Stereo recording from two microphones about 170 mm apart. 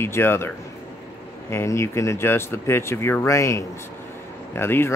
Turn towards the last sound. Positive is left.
turn(degrees=15)  # may be behind; listen again after turning